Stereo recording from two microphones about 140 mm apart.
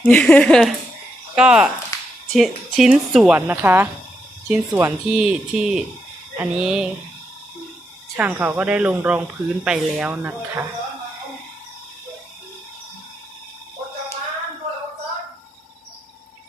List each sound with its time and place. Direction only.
0.0 s speech: 10° left (ahead or behind)
1.4 s a woman's voice: 5° right (ahead or behind)
1.9 s a sound: 25° left (ahead or behind)
2.3 s a woman's voice: centre (ahead or behind)
3.3 s a woman's voice: 10° right (ahead or behind)
8.2 s speech: 10° right (ahead or behind)